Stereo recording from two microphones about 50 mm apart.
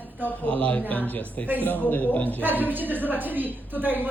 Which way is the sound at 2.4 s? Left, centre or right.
Right.